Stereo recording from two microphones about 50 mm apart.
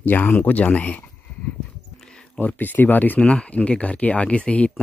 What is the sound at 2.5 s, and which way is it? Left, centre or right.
Speech, left.